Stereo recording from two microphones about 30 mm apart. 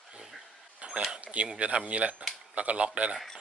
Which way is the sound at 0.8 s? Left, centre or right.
Right.